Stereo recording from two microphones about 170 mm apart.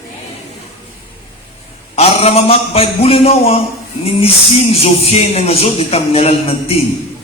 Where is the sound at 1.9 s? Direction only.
35° left (ahead or behind).